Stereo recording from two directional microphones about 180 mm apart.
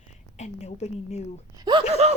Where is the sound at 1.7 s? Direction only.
30° right (ahead or behind).